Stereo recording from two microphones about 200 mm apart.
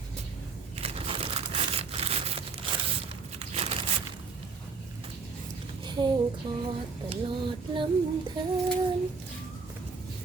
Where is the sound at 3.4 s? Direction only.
30° right (ahead or behind).